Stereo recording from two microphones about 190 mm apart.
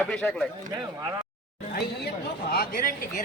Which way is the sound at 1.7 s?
55° left (ahead or behind).